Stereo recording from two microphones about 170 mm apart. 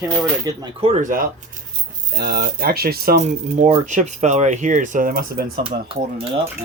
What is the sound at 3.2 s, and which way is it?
Speech, 45° right (ahead or behind).